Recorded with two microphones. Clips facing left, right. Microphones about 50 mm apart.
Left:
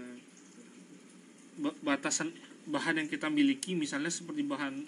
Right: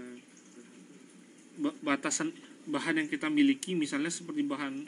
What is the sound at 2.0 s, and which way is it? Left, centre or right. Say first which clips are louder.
Speech: right 2 dB; centre.